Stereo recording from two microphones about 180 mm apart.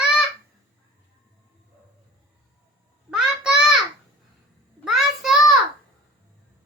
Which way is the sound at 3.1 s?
Centre (ahead or behind).